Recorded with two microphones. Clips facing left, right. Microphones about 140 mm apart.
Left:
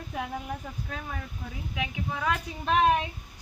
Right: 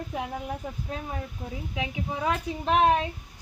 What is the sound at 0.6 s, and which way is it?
Speech, 20° right (ahead or behind).